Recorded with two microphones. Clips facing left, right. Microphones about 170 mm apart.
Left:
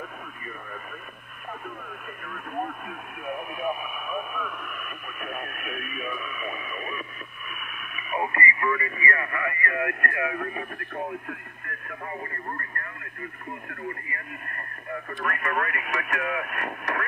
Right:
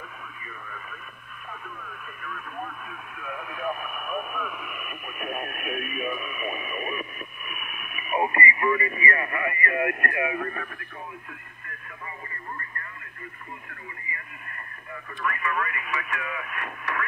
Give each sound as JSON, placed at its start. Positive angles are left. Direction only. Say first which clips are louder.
{"t": 1.5, "sound": "speech", "louder": "left 4 dB", "side_deg": 40}
{"t": 3.2, "sound": "speech", "louder": "left 3 dB", "side_deg": 15}
{"t": 4.1, "sound": "radio", "louder": "right 1 dB", "side_deg": -5}
{"t": 10.8, "sound": "speech", "louder": "left 8 dB", "side_deg": 55}
{"t": 13.8, "sound": "speech", "louder": "left 7 dB", "side_deg": 50}